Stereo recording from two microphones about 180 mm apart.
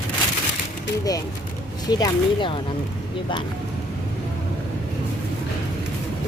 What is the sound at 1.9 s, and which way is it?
Speech, 25° left (ahead or behind).